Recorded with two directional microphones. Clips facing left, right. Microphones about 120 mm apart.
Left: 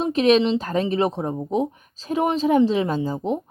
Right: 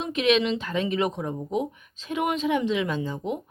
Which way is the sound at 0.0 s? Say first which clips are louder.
Left 5 dB; 35° left (ahead or behind).